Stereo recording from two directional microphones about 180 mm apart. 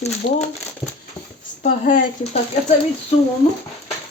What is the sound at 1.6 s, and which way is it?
Speech, 45° left (ahead or behind).